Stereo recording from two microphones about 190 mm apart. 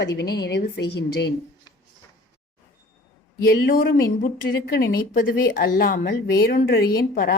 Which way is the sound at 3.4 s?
50° left (ahead or behind).